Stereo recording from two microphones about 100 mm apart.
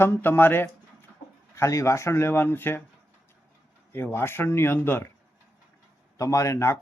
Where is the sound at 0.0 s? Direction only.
25° left (ahead or behind).